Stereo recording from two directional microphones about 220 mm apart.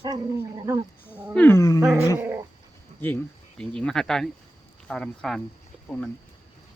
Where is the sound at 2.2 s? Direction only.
10° right (ahead or behind).